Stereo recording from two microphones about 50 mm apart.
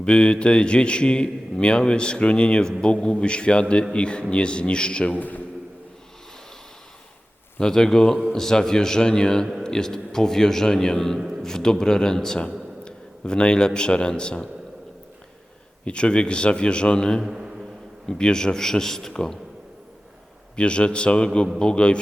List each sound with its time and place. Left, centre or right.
0.0 s a man's voice: centre
7.6 s a man's voice: centre
15.8 s a man's voice: left
17.2 s a sound: centre
18.1 s a man's voice: centre
20.6 s a man's voice: left